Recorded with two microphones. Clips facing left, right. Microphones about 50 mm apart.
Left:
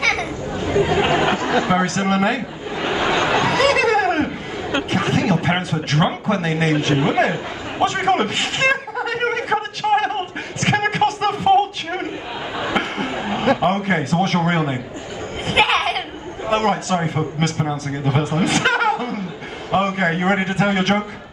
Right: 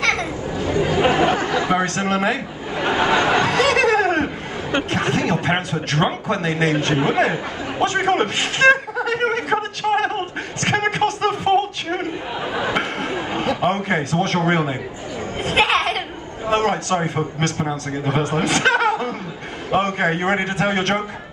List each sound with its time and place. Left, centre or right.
0.0 s children playing: centre
0.7 s speech: left
1.7 s a man's voice: centre
3.0 s a sound: centre
3.4 s laughter: centre
4.7 s a man's voice: centre
7.8 s chuckle: centre
10.1 s a sound: centre
13.6 s a man's voice: centre
15.4 s a sound: centre
16.4 s a man's voice: centre
17.6 s a man's voice: centre
18.4 s laughter: centre
19.7 s a man's voice: centre